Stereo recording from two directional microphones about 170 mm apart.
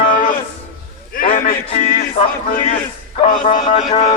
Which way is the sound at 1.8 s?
60° left (ahead or behind).